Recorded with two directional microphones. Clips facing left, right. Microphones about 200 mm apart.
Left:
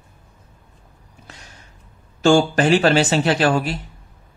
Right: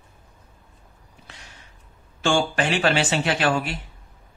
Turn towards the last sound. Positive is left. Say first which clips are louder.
# left 5 dB
turn(degrees=40)  # may be behind; listen again after turning